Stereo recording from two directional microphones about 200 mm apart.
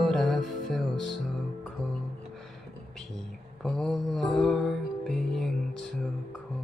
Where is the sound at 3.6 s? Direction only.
Centre (ahead or behind).